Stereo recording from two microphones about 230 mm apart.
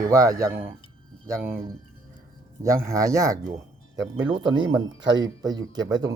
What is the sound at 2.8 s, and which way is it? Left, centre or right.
Speech, centre.